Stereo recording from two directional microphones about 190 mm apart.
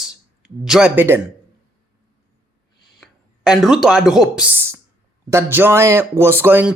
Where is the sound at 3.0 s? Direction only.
Centre (ahead or behind).